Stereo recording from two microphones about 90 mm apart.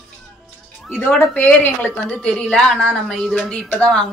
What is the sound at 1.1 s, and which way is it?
Speech, 20° left (ahead or behind).